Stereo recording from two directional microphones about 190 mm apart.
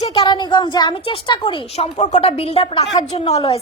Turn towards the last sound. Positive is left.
turn(degrees=25)  # may be behind; listen again after turning